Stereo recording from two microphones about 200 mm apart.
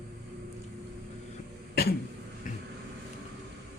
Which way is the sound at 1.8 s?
50° left (ahead or behind).